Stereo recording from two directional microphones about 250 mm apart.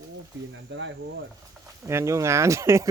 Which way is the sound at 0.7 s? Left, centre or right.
Right.